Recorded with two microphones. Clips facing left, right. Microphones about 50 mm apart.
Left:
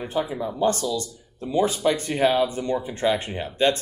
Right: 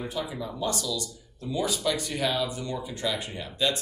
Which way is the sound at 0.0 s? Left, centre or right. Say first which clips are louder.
Left 6 dB; left.